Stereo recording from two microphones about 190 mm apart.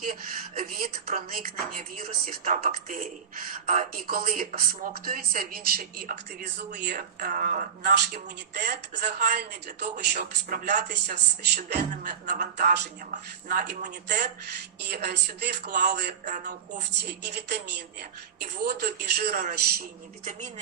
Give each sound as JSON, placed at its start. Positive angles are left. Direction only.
{"t": 0.0, "sound": "speech", "side_deg": -50}
{"t": 9.9, "sound": "speech", "side_deg": -45}
{"t": 12.2, "sound": "speech", "side_deg": -40}